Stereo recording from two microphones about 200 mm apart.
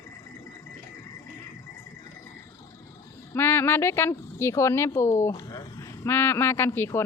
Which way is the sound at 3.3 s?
10° left (ahead or behind).